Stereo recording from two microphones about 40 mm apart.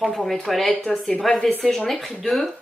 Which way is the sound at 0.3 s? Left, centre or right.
Centre.